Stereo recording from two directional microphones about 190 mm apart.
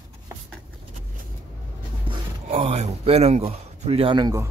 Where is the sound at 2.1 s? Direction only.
30° right (ahead or behind).